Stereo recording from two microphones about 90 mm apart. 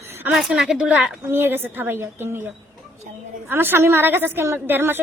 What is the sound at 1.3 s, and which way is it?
A woman's voice, 25° right (ahead or behind).